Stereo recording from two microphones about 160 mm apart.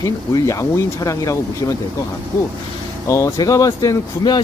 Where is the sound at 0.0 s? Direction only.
20° left (ahead or behind).